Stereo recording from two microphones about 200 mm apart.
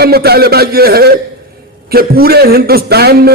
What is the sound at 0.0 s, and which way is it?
A man's voice, 50° right (ahead or behind).